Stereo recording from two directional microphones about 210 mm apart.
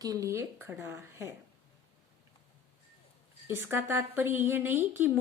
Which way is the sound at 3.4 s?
10° right (ahead or behind).